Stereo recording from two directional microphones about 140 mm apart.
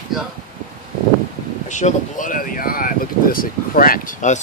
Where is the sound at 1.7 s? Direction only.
60° left (ahead or behind).